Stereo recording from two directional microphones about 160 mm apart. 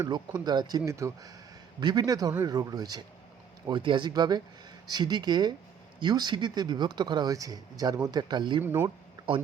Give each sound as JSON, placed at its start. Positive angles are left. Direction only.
{"t": 0.1, "sound": "speech", "side_deg": -25}
{"t": 8.6, "sound": "speech", "side_deg": -10}